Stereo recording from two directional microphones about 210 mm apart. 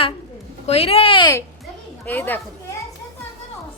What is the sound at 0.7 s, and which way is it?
Speech, 30° left (ahead or behind).